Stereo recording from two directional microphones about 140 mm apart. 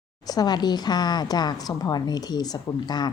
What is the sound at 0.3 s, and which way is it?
A woman's voice, 30° left (ahead or behind).